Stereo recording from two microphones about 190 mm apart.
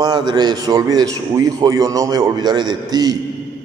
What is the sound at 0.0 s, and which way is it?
A man's voice, 20° right (ahead or behind).